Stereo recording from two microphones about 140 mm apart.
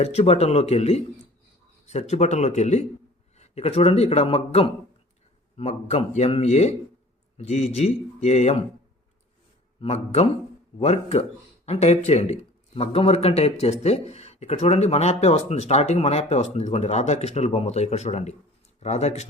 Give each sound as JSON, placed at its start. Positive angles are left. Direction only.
{"t": 0.0, "sound": "speech", "side_deg": 50}
{"t": 9.8, "sound": "speech", "side_deg": 50}